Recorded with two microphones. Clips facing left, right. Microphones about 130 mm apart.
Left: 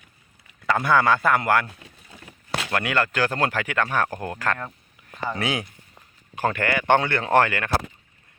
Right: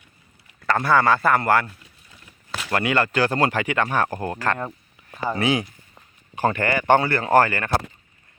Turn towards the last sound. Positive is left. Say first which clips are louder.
# right 2 dB
turn(degrees=0)  # may be behind; listen again after turning